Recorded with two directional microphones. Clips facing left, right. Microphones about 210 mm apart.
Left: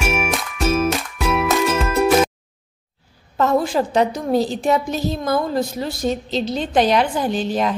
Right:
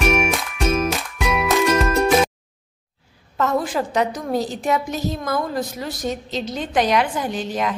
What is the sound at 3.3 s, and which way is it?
A woman's voice, 30° left (ahead or behind).